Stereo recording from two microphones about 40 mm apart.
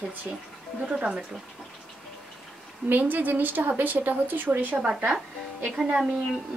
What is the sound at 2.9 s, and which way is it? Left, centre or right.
A woman's voice, right.